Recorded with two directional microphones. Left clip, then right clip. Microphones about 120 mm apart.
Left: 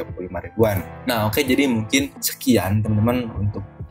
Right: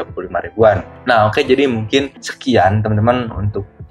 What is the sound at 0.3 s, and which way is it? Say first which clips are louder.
Speech: right 6 dB; 40° left (ahead or behind).